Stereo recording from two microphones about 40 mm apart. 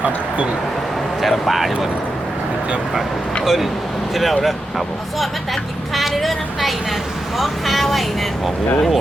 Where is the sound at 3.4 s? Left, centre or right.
Centre.